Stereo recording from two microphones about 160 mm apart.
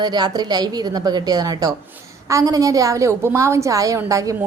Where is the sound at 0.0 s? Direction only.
25° right (ahead or behind).